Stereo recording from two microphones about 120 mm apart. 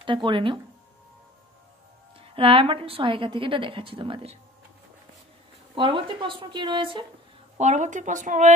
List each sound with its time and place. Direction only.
0.0 s a woman's voice: 45° right (ahead or behind)
2.1 s a woman's voice: 50° right (ahead or behind)
5.8 s a woman's voice: 45° right (ahead or behind)
7.5 s speech: 80° right